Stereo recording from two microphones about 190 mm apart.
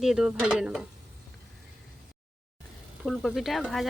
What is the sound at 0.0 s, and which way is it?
Speech, 5° right (ahead or behind).